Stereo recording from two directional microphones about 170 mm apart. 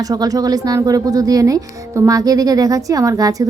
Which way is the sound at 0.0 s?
20° right (ahead or behind).